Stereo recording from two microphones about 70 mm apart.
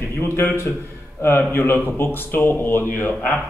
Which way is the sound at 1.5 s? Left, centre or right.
Left.